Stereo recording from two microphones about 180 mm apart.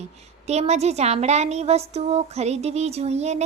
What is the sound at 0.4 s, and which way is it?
A child's voice, 35° right (ahead or behind).